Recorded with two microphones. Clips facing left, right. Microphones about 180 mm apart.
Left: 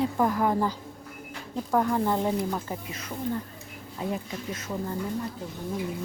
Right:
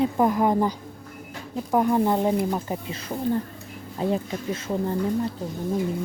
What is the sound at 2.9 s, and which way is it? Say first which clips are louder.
Speech: right 6 dB; 30° right (ahead or behind).